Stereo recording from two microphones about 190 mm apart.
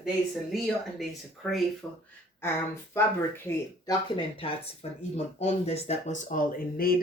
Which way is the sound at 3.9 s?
30° left (ahead or behind).